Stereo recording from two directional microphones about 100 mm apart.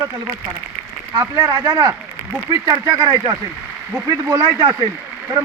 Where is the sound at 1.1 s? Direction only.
40° right (ahead or behind).